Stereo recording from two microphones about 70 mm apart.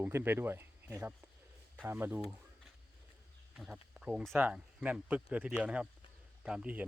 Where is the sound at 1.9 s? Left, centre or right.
Right.